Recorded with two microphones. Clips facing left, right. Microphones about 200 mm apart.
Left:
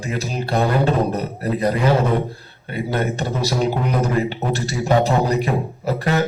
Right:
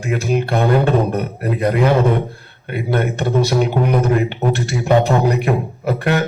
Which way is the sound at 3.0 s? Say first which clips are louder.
Right 5 dB; 60° right (ahead or behind).